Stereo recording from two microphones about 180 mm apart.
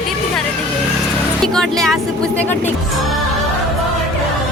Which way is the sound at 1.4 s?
5° left (ahead or behind).